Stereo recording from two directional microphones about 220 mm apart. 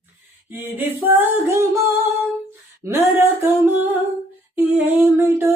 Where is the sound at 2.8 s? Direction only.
10° right (ahead or behind).